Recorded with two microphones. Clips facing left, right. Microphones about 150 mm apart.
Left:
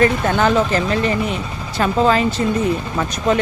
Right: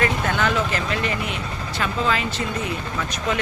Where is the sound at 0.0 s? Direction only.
35° left (ahead or behind).